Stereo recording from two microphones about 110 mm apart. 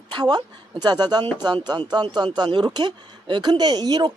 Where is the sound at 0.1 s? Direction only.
40° right (ahead or behind).